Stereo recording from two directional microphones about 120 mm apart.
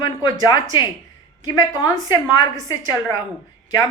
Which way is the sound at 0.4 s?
40° left (ahead or behind).